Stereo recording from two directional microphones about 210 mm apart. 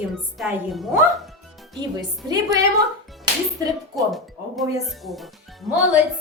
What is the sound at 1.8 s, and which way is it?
Speech, 20° right (ahead or behind).